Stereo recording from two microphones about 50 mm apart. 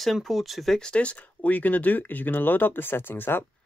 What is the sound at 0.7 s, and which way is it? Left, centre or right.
Speech, centre.